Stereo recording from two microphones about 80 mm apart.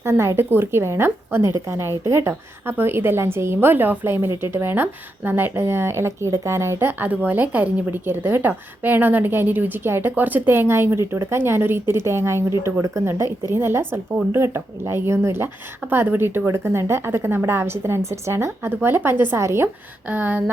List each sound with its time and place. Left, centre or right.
0.0 s a woman's voice: right
20.1 s a woman's voice: centre